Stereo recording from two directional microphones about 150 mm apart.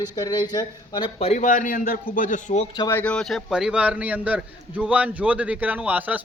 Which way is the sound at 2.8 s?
10° left (ahead or behind).